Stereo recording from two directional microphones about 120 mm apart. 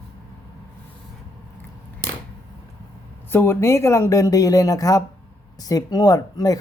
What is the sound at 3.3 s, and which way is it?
Speech, 20° left (ahead or behind).